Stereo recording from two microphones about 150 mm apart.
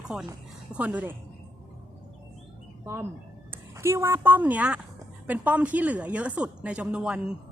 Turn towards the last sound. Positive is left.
turn(degrees=-5)  # may be behind; listen again after turning